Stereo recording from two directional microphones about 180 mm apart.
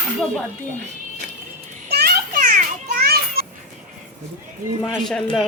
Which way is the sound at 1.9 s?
55° right (ahead or behind).